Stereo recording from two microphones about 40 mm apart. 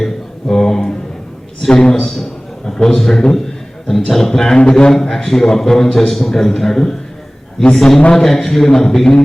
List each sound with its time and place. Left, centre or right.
0.0 s a sound: centre
1.6 s a man's voice: centre
4.5 s a man's voice: left